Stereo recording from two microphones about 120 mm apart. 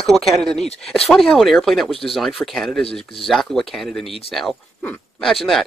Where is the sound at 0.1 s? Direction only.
5° left (ahead or behind).